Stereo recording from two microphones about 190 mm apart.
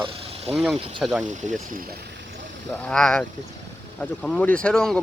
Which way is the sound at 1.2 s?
40° right (ahead or behind).